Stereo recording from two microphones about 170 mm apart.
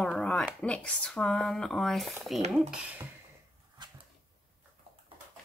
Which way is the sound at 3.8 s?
25° right (ahead or behind).